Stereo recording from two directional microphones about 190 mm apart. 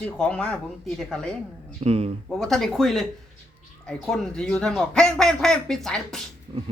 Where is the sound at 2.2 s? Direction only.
Centre (ahead or behind).